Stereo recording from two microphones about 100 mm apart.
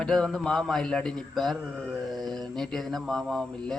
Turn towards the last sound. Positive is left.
turn(degrees=5)  # may be behind; listen again after turning